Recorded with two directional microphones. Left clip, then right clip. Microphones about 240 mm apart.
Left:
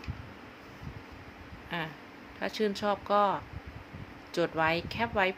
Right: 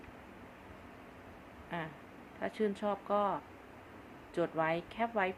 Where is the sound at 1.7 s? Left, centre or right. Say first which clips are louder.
Left 5 dB; centre.